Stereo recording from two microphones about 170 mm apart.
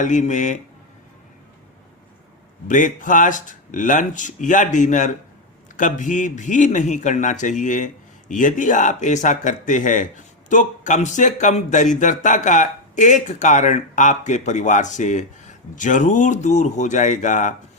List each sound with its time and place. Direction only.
0.0 s a man's voice: 50° left (ahead or behind)
2.6 s a man's voice: 50° left (ahead or behind)